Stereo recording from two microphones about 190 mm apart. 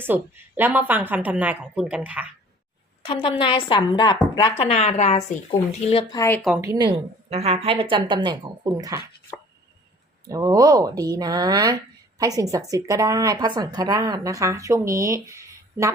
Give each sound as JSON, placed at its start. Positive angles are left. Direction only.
{"t": 0.0, "sound": "speech", "side_deg": -10}
{"t": 3.1, "sound": "a woman's voice", "side_deg": 30}
{"t": 6.6, "sound": "a woman's voice", "side_deg": -20}
{"t": 10.2, "sound": "a woman's voice", "side_deg": -20}